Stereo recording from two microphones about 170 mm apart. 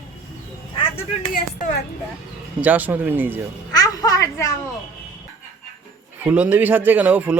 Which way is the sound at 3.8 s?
20° left (ahead or behind).